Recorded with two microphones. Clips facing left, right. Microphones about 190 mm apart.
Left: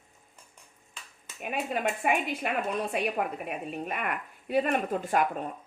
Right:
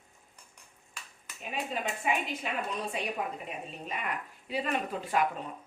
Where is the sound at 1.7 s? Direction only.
55° left (ahead or behind).